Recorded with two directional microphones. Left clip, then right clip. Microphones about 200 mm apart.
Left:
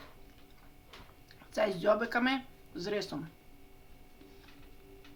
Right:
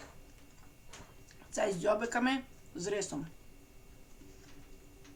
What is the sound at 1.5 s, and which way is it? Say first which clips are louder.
Speech: left 2 dB; 20° left (ahead or behind).